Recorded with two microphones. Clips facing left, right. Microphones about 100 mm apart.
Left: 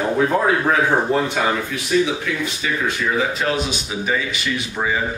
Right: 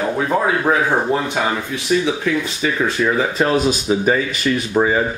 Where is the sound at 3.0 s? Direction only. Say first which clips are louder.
Right 4 dB; 40° right (ahead or behind).